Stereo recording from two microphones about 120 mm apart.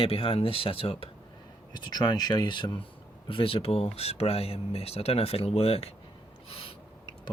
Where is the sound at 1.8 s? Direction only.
35° left (ahead or behind).